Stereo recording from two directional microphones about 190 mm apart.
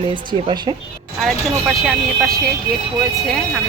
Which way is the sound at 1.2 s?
Centre (ahead or behind).